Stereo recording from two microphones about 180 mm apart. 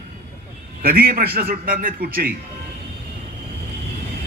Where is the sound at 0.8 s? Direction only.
55° right (ahead or behind).